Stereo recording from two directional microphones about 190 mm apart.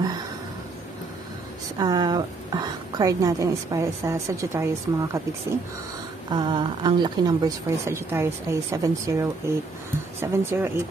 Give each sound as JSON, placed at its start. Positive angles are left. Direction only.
{"t": 1.8, "sound": "a woman's voice", "side_deg": -20}
{"t": 6.3, "sound": "a woman's voice", "side_deg": -25}